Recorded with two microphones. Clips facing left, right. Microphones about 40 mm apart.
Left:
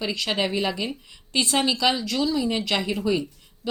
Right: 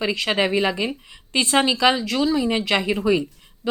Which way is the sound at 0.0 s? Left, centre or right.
Right.